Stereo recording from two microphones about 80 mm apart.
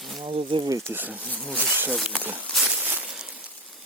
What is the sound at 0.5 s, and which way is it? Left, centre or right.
Stir, right.